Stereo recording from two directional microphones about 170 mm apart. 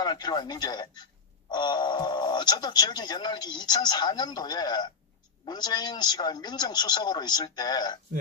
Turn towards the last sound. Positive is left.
turn(degrees=25)  # may be behind; listen again after turning